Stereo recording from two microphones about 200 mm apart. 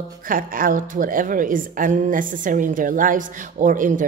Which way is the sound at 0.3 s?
45° right (ahead or behind).